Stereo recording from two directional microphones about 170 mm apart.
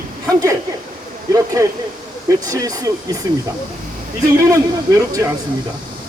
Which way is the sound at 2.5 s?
20° right (ahead or behind).